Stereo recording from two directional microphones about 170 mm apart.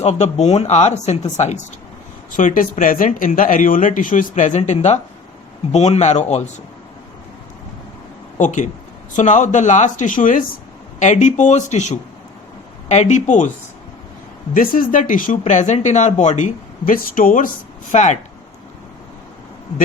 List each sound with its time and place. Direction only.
0.0 s speech: 40° left (ahead or behind)
2.3 s speech: 50° left (ahead or behind)
8.4 s speech: 45° left (ahead or behind)
14.5 s speech: 55° left (ahead or behind)